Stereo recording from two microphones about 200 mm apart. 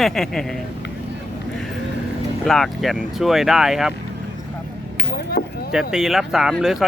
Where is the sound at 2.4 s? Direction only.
Centre (ahead or behind).